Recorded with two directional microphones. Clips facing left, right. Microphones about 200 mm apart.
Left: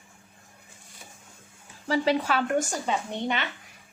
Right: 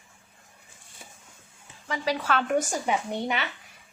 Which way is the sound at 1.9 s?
30° left (ahead or behind).